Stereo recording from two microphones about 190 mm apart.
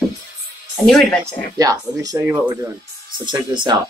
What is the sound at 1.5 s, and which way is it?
Speech, 20° right (ahead or behind).